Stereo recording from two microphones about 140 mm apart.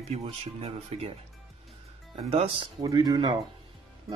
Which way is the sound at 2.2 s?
45° right (ahead or behind).